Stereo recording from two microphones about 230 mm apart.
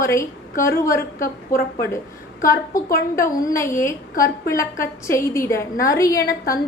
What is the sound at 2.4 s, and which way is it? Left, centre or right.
A woman's voice, centre.